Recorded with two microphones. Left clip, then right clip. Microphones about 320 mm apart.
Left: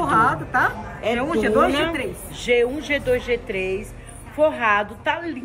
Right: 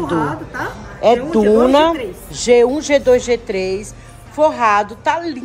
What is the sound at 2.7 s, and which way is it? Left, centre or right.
Speech, centre.